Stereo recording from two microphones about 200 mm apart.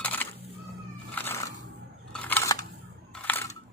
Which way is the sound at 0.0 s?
10° left (ahead or behind).